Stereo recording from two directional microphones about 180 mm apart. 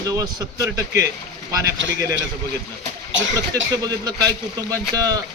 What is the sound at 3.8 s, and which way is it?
Speech, 20° right (ahead or behind).